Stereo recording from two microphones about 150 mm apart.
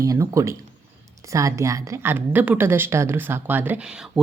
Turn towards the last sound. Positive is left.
turn(degrees=-5)  # may be behind; listen again after turning